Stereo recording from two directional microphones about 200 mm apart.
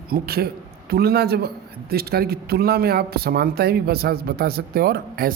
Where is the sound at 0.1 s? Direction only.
50° right (ahead or behind).